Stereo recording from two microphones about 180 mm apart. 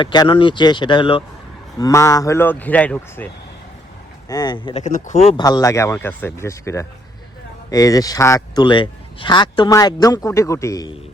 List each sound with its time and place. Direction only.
0.0 s a man's voice: 25° left (ahead or behind)
1.8 s speech: 15° left (ahead or behind)
4.3 s a man's voice: 25° left (ahead or behind)
4.8 s speech: 40° left (ahead or behind)
5.4 s a man's voice: 20° left (ahead or behind)